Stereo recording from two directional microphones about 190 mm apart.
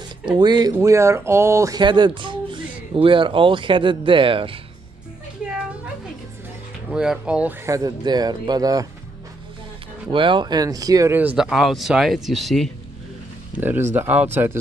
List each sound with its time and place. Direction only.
0.4 s speech: 20° right (ahead or behind)
6.9 s speech: 5° right (ahead or behind)
10.1 s speech: 25° right (ahead or behind); by 12.7 s centre (ahead or behind)
13.6 s speech: 10° right (ahead or behind)